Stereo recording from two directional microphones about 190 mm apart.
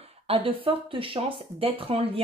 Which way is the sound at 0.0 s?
30° right (ahead or behind).